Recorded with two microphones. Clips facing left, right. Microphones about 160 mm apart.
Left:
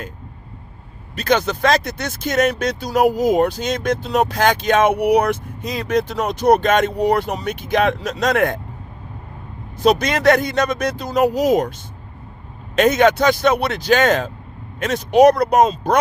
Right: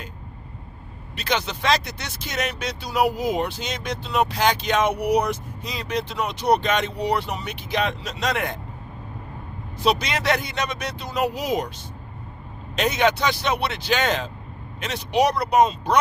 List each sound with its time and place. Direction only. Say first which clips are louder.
1.1 s speech: left 8 dB; 45° left (ahead or behind)
9.8 s speech: left 7 dB; 45° left (ahead or behind)
12.7 s speech: left 7 dB; 50° left (ahead or behind)